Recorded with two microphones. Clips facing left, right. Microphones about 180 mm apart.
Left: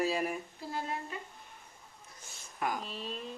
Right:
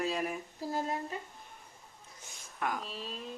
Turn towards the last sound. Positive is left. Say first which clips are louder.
# left 1 dB
turn(degrees=0)  # may be behind; listen again after turning